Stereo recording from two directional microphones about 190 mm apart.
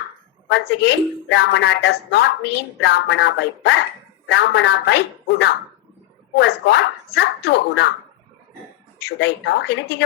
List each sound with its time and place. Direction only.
0.4 s speech: 65° left (ahead or behind)
9.0 s speech: 65° left (ahead or behind)